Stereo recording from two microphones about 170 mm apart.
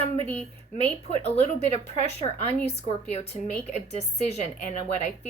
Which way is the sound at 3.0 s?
40° left (ahead or behind).